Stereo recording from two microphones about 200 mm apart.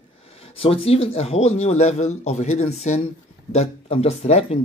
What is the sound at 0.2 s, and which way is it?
A man's voice, 30° left (ahead or behind).